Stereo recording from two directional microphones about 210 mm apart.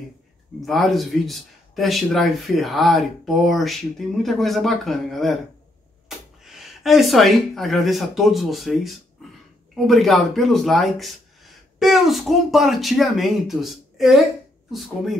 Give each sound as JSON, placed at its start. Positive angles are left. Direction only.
{"t": 0.6, "sound": "speech", "side_deg": 0}